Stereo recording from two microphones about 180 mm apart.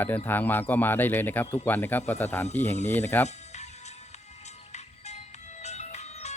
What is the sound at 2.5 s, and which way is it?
Speech, 40° left (ahead or behind).